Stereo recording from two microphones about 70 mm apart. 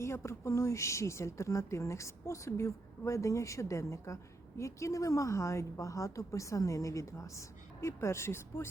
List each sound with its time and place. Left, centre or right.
0.0 s a woman's voice: left